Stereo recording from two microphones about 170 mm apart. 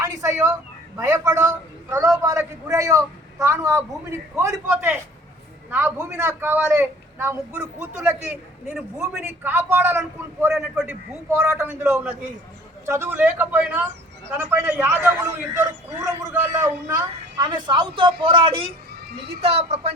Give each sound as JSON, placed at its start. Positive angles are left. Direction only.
{"t": 0.0, "sound": "a woman's voice", "side_deg": -15}
{"t": 17.4, "sound": "a woman's voice", "side_deg": -25}